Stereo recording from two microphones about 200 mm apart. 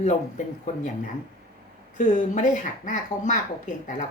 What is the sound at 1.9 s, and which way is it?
Speech, 40° left (ahead or behind).